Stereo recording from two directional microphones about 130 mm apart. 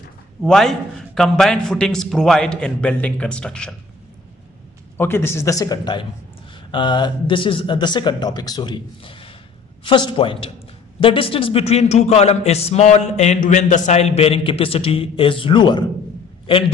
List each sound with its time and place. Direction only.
0.5 s a man's voice: 5° left (ahead or behind)
4.9 s a man's voice: 15° left (ahead or behind); by 15.8 s 35° left (ahead or behind)